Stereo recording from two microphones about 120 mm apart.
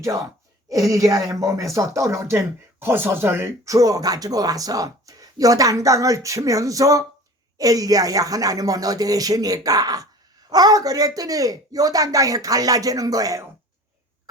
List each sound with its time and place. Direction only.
0.7 s speech: 30° right (ahead or behind)